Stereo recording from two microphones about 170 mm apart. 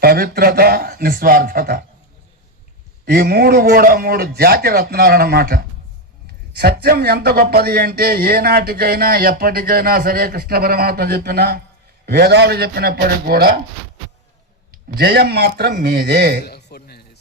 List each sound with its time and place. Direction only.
0.0 s a man's voice: 60° right (ahead or behind)
3.1 s a man's voice: 60° right (ahead or behind)
14.9 s a man's voice: 75° right (ahead or behind)
16.4 s a sound: 75° left (ahead or behind)